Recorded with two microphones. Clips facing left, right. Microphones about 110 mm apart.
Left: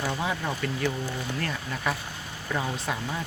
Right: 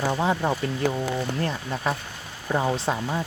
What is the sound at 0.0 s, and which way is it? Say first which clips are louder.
Speech: right 6 dB; 30° right (ahead or behind).